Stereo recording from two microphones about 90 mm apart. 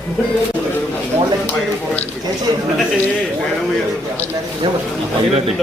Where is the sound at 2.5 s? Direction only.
50° right (ahead or behind).